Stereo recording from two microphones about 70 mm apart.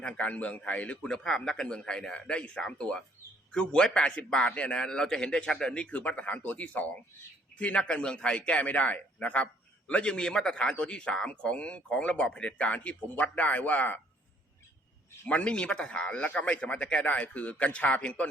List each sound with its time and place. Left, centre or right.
0.0 s a man's voice: centre
15.3 s a man's voice: centre